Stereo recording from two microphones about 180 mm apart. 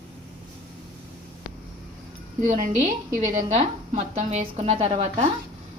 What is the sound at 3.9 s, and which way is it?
A woman's voice, 40° right (ahead or behind).